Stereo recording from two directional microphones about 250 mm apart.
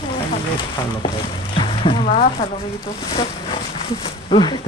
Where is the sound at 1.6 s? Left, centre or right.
Left.